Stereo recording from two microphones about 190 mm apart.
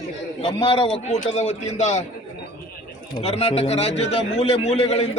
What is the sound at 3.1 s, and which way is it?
A man's voice, 30° left (ahead or behind).